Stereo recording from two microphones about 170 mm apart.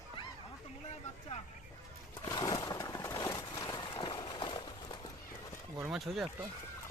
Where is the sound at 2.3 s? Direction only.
25° left (ahead or behind).